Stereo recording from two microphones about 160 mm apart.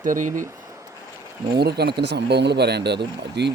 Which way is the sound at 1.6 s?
90° right.